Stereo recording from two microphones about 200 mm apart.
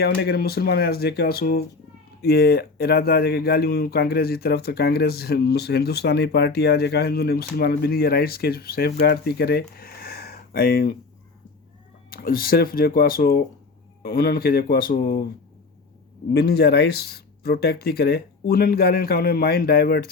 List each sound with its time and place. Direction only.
0.0 s speech: 55° left (ahead or behind)
12.1 s speech: 45° left (ahead or behind)
16.4 s speech: 55° left (ahead or behind)